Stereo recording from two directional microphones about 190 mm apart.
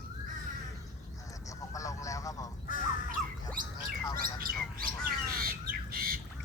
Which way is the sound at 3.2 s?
Centre (ahead or behind).